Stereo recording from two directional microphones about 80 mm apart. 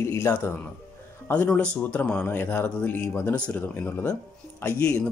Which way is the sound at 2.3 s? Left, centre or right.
Left.